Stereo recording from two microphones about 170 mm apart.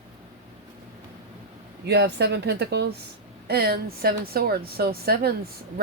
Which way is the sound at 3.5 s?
65° right (ahead or behind).